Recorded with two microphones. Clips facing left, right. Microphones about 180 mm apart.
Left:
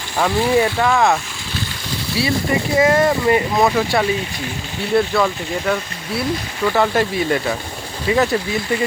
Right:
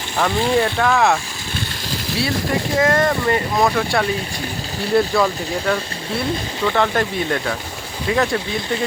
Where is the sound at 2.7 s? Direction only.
5° left (ahead or behind).